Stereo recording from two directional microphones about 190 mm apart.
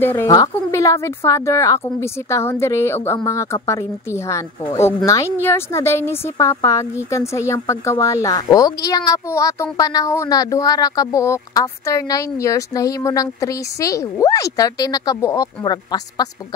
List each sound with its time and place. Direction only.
0.0 s a woman's voice: 10° left (ahead or behind)